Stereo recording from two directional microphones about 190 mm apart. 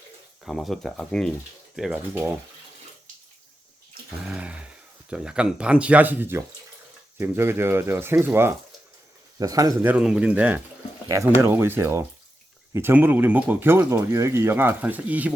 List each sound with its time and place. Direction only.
0.4 s speech: centre (ahead or behind)
4.3 s a sound: 5° right (ahead or behind)
5.1 s speech: 5° right (ahead or behind)
9.9 s speech: 5° right (ahead or behind)